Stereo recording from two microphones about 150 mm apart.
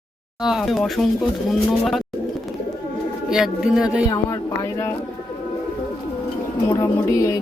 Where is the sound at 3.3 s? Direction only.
5° right (ahead or behind).